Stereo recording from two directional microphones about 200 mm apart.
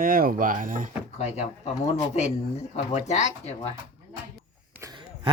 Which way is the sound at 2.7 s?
35° left (ahead or behind).